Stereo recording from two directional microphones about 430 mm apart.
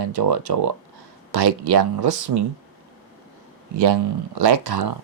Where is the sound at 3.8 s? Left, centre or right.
Right.